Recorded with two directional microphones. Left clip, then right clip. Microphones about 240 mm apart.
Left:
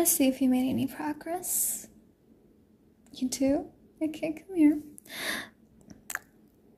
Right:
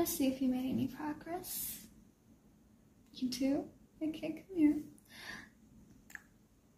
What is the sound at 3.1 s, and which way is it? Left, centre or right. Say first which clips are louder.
A woman's voice: left 8 dB; left.